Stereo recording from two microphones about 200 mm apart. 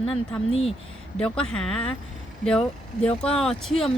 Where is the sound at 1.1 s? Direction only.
5° left (ahead or behind).